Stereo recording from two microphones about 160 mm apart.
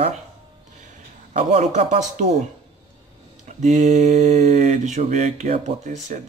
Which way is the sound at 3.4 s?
50° right (ahead or behind).